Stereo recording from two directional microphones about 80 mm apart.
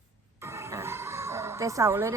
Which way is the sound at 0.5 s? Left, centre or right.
Right.